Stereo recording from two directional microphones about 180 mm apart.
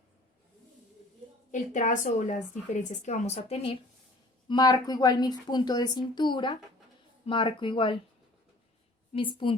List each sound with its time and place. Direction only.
1.5 s a woman's voice: 45° left (ahead or behind)
4.4 s a woman's voice: 20° left (ahead or behind)
9.1 s a woman's voice: 30° left (ahead or behind)